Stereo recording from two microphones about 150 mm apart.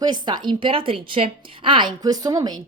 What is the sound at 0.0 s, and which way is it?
A woman's voice, 30° right (ahead or behind).